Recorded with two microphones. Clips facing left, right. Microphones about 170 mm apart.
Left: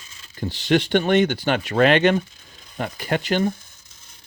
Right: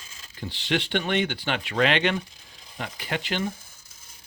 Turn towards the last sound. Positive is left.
turn(degrees=45)  # may be behind; listen again after turning